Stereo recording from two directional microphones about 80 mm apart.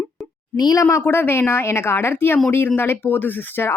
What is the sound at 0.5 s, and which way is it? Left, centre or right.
Speech, left.